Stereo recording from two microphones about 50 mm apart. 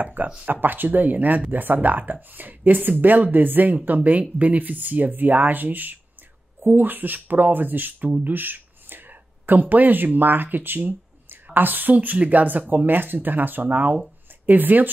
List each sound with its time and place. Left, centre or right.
0.0 s speech: right